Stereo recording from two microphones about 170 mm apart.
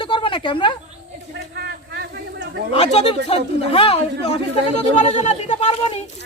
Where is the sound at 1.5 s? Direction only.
75° right (ahead or behind).